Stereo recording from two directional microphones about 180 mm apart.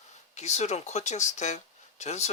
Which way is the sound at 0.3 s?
40° left (ahead or behind).